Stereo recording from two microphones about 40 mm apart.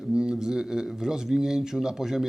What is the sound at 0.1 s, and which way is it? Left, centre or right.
Speech, centre.